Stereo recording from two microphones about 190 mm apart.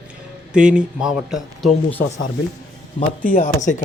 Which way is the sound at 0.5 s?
5° right (ahead or behind).